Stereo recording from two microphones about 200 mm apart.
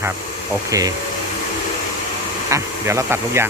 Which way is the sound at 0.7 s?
15° right (ahead or behind).